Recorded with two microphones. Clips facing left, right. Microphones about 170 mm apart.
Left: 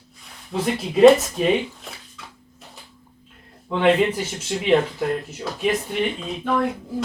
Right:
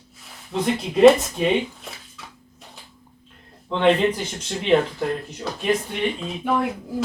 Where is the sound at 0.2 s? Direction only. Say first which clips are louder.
Even; centre (ahead or behind).